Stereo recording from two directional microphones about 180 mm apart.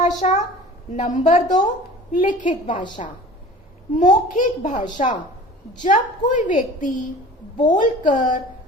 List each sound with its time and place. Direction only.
0.0 s a woman's voice: 40° left (ahead or behind)
2.7 s a woman's voice: 25° left (ahead or behind)
3.9 s a child's voice: 45° left (ahead or behind)